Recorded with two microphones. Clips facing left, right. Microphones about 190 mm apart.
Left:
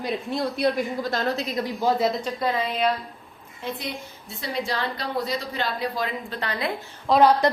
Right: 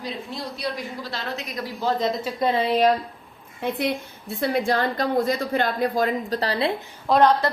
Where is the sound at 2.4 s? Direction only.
30° right (ahead or behind).